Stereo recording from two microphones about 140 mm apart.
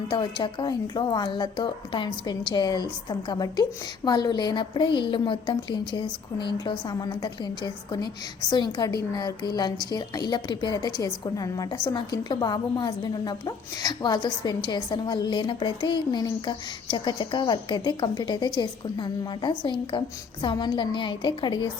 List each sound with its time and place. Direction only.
0.1 s a woman's voice: 35° left (ahead or behind)